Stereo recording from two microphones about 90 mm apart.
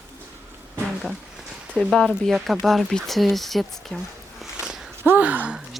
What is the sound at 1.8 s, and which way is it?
Speech, centre (ahead or behind).